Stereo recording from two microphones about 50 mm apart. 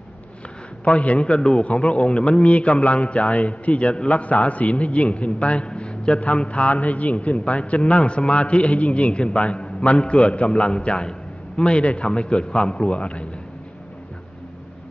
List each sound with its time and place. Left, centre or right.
0.8 s a man's voice: left